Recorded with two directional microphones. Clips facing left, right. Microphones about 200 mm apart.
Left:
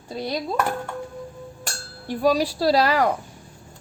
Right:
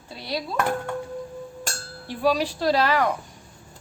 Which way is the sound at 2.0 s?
40° left (ahead or behind).